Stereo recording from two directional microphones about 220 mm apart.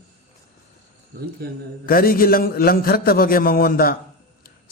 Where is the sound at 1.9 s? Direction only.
40° left (ahead or behind).